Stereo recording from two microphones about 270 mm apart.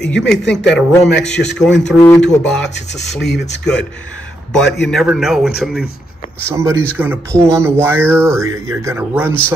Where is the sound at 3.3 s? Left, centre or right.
Left.